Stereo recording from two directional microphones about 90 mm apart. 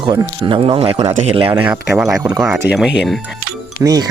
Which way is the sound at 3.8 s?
45° right (ahead or behind).